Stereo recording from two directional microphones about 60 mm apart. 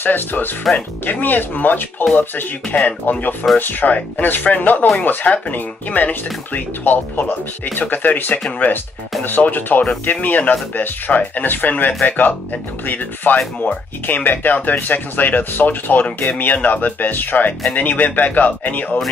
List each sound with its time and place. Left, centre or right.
0.0 s speech: left